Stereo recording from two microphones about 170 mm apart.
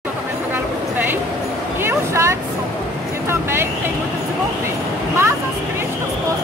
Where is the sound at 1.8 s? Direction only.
15° right (ahead or behind).